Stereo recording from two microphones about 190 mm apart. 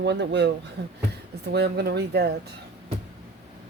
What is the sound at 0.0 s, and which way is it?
Speech, 65° right (ahead or behind).